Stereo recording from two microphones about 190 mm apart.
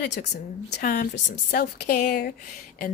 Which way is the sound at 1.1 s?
60° left (ahead or behind).